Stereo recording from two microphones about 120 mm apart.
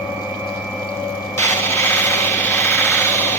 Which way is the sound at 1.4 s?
25° left (ahead or behind).